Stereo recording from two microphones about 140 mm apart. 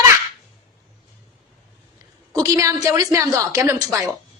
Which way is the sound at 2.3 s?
25° right (ahead or behind).